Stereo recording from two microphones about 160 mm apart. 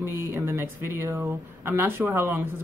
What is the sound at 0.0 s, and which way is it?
Speech, 15° right (ahead or behind).